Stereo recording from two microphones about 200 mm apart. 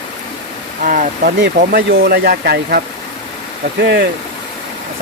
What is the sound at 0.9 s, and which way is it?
Speech, 45° right (ahead or behind).